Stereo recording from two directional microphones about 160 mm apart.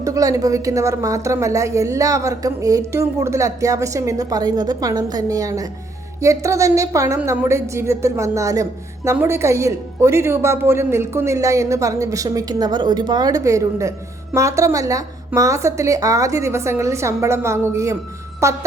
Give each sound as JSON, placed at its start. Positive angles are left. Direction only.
{"t": 0.0, "sound": "a woman's voice", "side_deg": -20}